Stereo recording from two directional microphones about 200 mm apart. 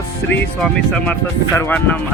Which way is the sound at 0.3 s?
5° left (ahead or behind).